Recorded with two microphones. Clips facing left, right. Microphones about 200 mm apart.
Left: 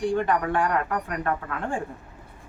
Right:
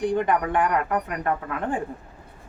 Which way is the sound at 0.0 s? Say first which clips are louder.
Right 1 dB; 20° right (ahead or behind).